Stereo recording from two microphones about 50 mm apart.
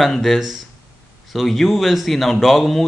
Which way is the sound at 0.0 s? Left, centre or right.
Centre.